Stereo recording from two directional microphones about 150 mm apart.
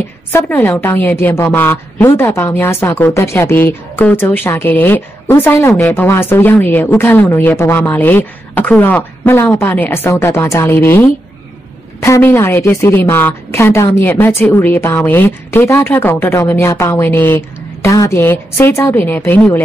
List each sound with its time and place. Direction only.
0.3 s a woman's voice: 15° left (ahead or behind)